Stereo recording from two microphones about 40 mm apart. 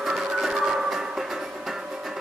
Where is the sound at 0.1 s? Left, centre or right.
Centre.